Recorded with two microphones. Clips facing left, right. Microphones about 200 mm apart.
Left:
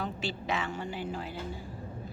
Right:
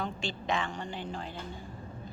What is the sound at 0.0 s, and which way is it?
A woman's voice, 5° left (ahead or behind).